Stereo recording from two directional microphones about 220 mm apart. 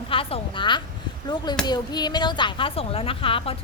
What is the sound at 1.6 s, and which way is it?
Speech, 20° left (ahead or behind).